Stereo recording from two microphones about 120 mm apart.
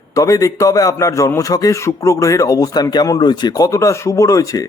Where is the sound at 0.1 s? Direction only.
30° left (ahead or behind).